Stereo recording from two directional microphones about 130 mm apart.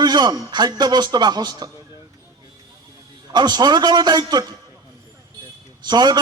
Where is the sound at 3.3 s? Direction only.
35° right (ahead or behind).